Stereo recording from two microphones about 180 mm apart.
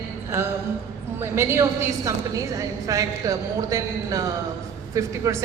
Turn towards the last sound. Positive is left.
turn(degrees=-20)  # may be behind; listen again after turning